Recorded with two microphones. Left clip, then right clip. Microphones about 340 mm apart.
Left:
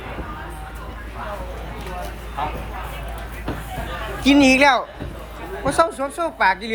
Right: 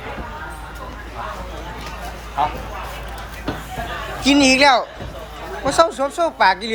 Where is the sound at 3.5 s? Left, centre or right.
Right.